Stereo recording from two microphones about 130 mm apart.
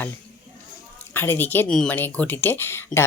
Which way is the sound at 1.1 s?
15° left (ahead or behind).